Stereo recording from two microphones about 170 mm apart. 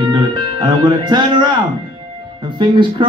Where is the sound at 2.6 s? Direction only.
30° right (ahead or behind).